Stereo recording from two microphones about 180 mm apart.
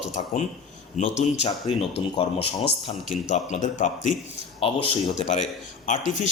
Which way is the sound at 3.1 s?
40° left (ahead or behind).